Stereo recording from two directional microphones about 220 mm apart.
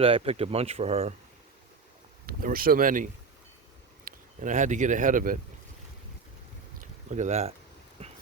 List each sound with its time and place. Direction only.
0.0 s speech: 25° right (ahead or behind)
2.2 s speech: 40° right (ahead or behind)
7.1 s speech: 30° right (ahead or behind)
8.0 s a sound: 25° right (ahead or behind)